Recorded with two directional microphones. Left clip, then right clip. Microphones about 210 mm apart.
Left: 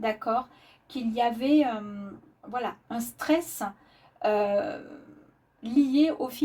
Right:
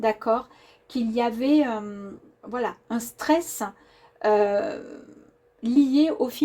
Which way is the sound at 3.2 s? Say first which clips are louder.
Right 4 dB; 40° right (ahead or behind).